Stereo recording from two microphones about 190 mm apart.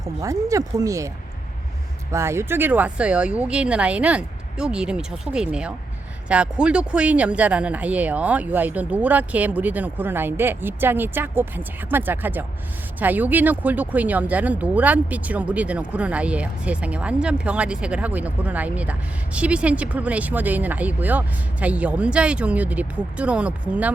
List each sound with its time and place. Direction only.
0.0 s speech: 15° right (ahead or behind)
2.1 s speech: 15° right (ahead or behind)